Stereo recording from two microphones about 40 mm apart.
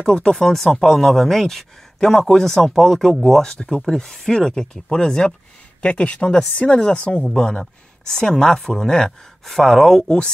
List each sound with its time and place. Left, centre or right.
0.1 s speech: centre
5.8 s speech: left; by 10.1 s centre